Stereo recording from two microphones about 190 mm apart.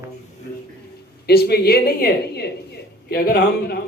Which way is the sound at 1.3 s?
55° left (ahead or behind).